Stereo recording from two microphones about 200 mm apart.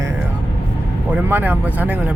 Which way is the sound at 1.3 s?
10° right (ahead or behind).